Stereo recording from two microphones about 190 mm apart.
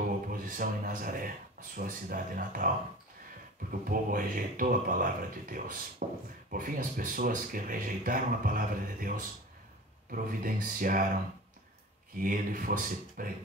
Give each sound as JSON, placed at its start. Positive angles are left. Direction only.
{"t": 0.3, "sound": "speech", "side_deg": -45}
{"t": 3.9, "sound": "speech", "side_deg": -45}
{"t": 12.2, "sound": "speech", "side_deg": -45}